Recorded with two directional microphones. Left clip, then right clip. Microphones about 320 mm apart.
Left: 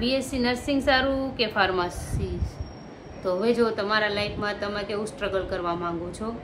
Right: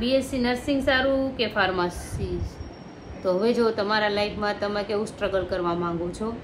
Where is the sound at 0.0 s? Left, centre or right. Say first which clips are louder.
Right 2 dB; centre.